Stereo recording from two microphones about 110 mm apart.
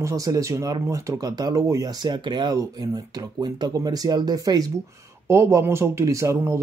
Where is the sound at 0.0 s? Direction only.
30° right (ahead or behind).